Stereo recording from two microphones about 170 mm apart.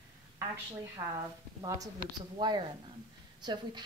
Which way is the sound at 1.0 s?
15° right (ahead or behind).